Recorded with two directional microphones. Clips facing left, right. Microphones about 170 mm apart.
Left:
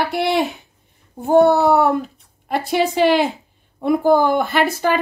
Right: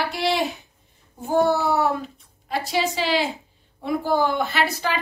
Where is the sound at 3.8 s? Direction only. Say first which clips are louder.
Left 7 dB; 50° left (ahead or behind).